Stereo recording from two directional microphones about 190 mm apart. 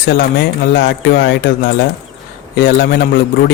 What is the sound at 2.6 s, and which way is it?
Speech, 55° left (ahead or behind).